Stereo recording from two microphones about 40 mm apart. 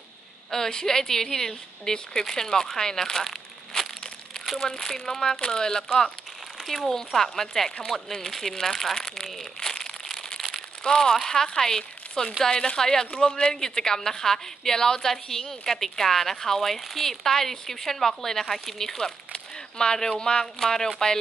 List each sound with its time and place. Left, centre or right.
0.5 s a woman's voice: centre
6.6 s a woman's voice: centre
9.2 s crumpling: centre
10.8 s a woman's voice: centre